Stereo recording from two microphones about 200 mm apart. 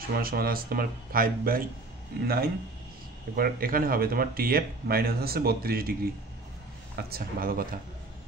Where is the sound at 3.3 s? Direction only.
45° right (ahead or behind).